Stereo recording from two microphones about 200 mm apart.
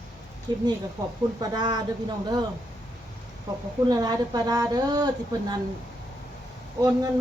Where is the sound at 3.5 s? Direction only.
20° right (ahead or behind).